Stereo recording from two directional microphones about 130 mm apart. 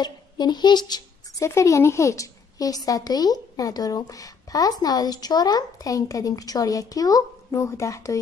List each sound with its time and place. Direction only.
0.0 s a woman's voice: 35° left (ahead or behind)
1.5 s a woman's voice: 20° left (ahead or behind)